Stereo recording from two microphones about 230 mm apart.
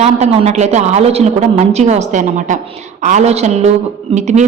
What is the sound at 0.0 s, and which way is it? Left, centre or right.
A woman's voice, right.